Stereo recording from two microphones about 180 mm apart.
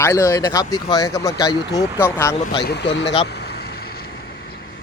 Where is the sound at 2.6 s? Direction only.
70° left (ahead or behind).